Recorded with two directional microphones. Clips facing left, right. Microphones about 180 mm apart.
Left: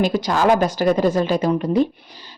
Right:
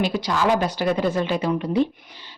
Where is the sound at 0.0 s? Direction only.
45° left (ahead or behind).